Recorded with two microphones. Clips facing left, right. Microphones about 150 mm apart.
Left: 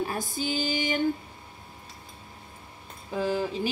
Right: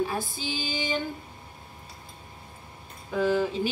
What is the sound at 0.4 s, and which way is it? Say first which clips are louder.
Speech: left 5 dB; 45° left (ahead or behind).